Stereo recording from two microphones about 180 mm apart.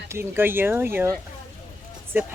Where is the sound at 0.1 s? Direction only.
15° right (ahead or behind).